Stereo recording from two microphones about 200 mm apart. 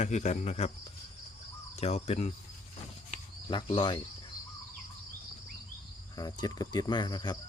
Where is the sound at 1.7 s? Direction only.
30° left (ahead or behind).